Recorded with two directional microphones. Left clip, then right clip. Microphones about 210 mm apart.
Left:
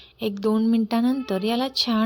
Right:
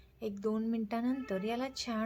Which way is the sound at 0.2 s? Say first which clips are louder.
Left 12 dB; 35° left (ahead or behind).